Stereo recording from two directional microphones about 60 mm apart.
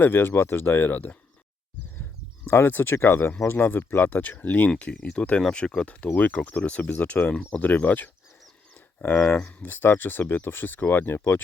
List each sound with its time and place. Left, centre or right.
0.0 s speech: left
2.5 s speech: left
4.9 s speech: centre; by 11.2 s left